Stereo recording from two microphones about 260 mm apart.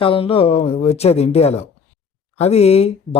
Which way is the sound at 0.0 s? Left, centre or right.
Centre.